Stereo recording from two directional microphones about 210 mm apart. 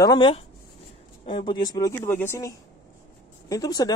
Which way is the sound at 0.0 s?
20° left (ahead or behind).